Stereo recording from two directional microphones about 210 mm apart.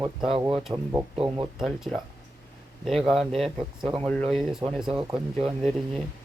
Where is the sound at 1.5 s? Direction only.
Centre (ahead or behind).